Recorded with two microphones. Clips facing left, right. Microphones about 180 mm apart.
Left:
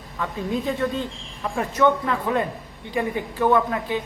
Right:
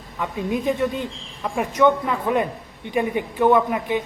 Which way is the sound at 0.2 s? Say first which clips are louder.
Right 2 dB; 20° right (ahead or behind).